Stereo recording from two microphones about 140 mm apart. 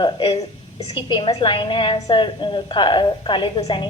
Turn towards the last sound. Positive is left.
turn(degrees=35)  # may be behind; listen again after turning